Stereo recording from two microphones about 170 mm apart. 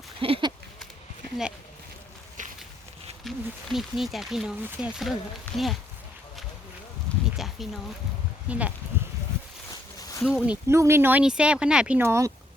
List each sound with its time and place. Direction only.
0.2 s a sound: 30° right (ahead or behind)
2.4 s insect: 50° right (ahead or behind)
3.2 s speech: centre (ahead or behind)
5.5 s speech: 5° left (ahead or behind)
7.3 s speech: centre (ahead or behind)
10.2 s speech: 5° right (ahead or behind)